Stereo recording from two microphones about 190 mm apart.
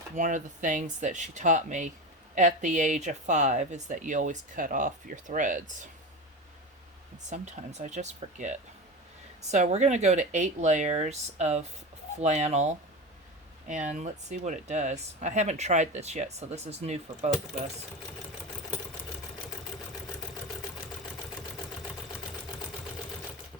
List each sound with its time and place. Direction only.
0.2 s speech: 40° right (ahead or behind)
7.3 s speech: 40° right (ahead or behind)